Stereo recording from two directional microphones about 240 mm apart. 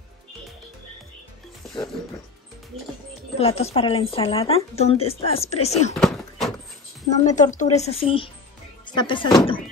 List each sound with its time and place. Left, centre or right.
3.3 s speech: left
5.9 s horse: centre
7.2 s speech: left